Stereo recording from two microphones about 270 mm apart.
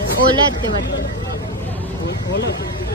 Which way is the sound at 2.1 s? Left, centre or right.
Left.